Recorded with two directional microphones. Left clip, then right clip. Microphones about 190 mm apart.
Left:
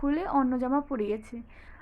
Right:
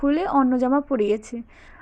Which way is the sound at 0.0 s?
30° right (ahead or behind).